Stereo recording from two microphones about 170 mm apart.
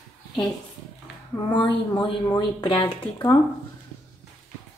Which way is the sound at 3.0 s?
15° left (ahead or behind).